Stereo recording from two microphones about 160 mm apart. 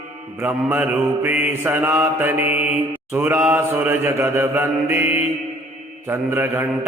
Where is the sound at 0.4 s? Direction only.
10° right (ahead or behind).